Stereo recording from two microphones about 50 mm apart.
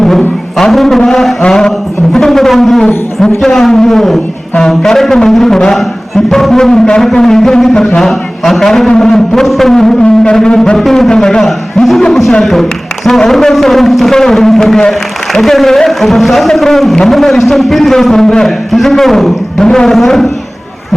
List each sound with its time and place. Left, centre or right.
0.0 s a sound: centre
1.4 s speech: centre
11.1 s a man's voice: centre